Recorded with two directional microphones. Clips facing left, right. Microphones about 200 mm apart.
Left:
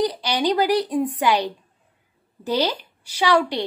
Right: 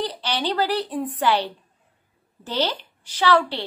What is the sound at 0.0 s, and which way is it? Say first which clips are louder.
A woman's voice: left 5 dB; 15° left (ahead or behind).